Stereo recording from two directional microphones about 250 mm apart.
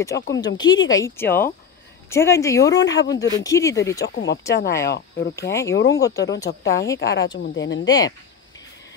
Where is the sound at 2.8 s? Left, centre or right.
Left.